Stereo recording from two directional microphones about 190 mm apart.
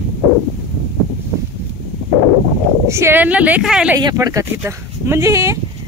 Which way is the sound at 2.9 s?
10° right (ahead or behind).